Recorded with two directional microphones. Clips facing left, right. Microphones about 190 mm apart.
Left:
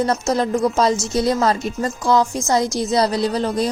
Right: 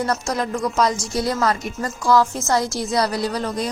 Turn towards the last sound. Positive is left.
turn(degrees=30)  # may be behind; listen again after turning